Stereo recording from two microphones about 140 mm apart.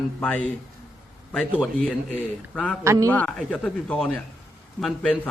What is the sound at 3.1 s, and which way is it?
A man's voice, 10° left (ahead or behind).